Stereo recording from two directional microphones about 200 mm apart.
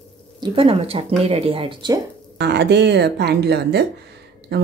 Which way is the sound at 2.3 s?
55° right (ahead or behind).